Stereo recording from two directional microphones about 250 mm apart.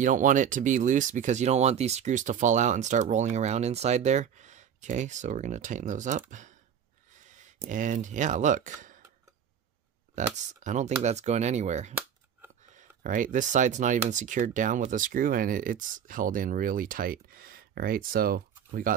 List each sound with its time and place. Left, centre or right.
0.0 s speech: right
7.5 s speech: right
10.1 s speech: right